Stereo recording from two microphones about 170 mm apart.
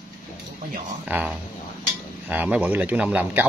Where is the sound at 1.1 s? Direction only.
10° right (ahead or behind).